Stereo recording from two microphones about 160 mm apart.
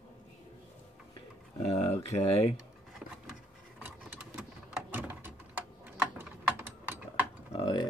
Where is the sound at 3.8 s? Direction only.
10° right (ahead or behind).